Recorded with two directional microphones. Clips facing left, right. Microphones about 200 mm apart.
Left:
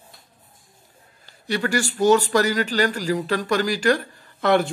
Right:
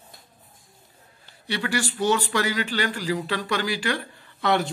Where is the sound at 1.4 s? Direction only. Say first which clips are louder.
Left 4 dB; 45° left (ahead or behind).